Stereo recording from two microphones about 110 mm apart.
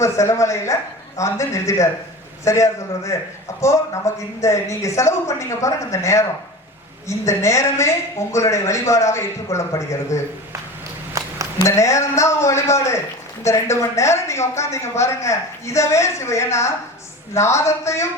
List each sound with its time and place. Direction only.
0.0 s speech: 25° left (ahead or behind)
11.6 s speech: 25° left (ahead or behind)